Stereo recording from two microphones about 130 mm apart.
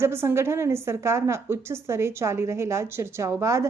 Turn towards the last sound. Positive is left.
turn(degrees=-25)  # may be behind; listen again after turning